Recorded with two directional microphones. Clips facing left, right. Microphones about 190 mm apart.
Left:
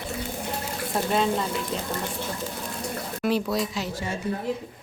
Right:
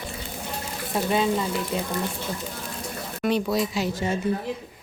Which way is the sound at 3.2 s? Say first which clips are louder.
Right 2 dB; centre (ahead or behind).